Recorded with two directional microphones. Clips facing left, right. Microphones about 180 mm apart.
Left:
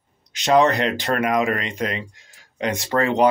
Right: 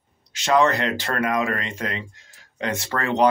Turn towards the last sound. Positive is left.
turn(degrees=15)  # may be behind; listen again after turning